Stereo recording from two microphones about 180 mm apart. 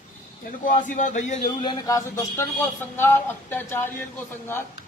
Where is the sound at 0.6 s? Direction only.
45° left (ahead or behind).